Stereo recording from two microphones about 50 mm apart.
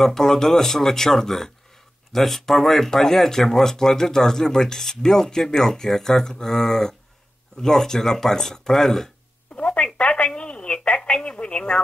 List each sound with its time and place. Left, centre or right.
0.0 s speech: centre
9.9 s telephone: left
11.1 s speech: left